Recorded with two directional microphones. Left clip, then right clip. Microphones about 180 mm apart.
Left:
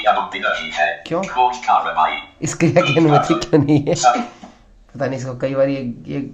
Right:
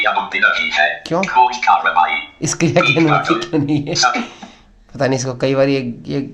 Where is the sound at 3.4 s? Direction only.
20° left (ahead or behind).